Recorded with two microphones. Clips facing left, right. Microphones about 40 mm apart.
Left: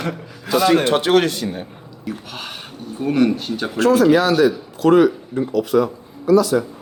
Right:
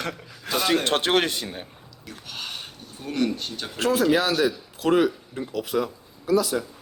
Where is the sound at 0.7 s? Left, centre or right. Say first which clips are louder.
Left 5 dB; left.